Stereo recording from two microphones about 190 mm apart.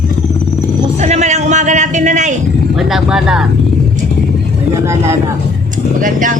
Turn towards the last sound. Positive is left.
turn(degrees=-45)  # may be behind; listen again after turning